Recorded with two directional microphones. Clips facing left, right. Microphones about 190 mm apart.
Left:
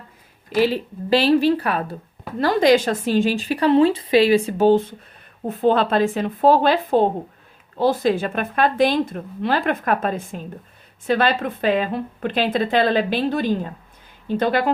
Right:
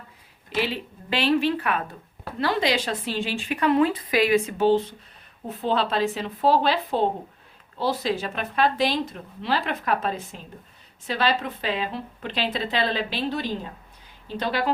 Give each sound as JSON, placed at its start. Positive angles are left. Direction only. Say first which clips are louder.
{"t": 0.5, "sound": "a woman's voice", "louder": "left 8 dB", "side_deg": 40}